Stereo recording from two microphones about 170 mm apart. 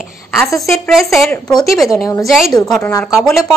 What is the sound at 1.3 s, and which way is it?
Speech, 20° left (ahead or behind).